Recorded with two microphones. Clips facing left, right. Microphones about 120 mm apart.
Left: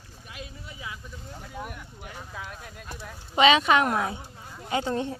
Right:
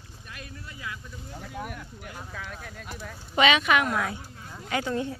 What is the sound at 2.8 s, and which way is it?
Speech, 5° left (ahead or behind).